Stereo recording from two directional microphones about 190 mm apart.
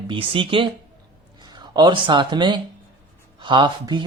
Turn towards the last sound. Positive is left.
turn(degrees=-25)  # may be behind; listen again after turning